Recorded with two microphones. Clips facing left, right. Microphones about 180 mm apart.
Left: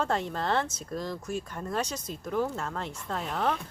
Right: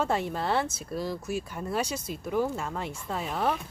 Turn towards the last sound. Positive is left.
turn(degrees=-10)  # may be behind; listen again after turning